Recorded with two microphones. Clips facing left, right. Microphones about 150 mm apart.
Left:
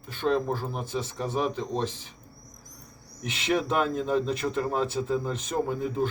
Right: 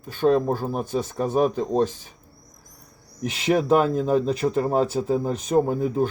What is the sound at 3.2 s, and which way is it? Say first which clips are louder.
Speech: right 7 dB; 40° right (ahead or behind).